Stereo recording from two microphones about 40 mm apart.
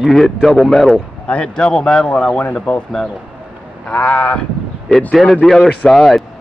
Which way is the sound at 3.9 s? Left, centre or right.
Left.